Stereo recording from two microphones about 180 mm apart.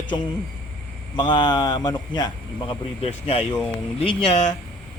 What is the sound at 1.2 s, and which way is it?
A man's voice, 25° left (ahead or behind).